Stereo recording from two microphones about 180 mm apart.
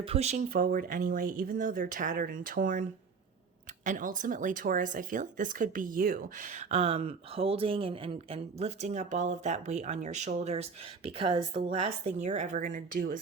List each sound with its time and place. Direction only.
0.0 s speech: 35° right (ahead or behind)
3.8 s speech: 45° right (ahead or behind)